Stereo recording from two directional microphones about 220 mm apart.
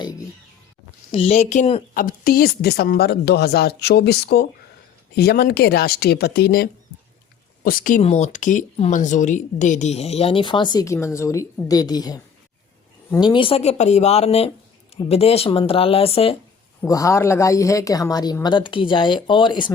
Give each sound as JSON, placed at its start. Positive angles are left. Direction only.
{"t": 0.0, "sound": "a sound", "side_deg": 15}
{"t": 1.1, "sound": "a woman's voice", "side_deg": 25}
{"t": 16.8, "sound": "speech", "side_deg": 15}